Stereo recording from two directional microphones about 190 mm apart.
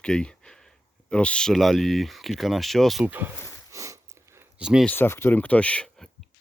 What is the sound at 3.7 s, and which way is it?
Sniff, 15° right (ahead or behind).